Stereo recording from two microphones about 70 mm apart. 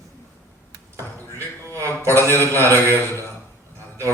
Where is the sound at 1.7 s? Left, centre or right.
Right.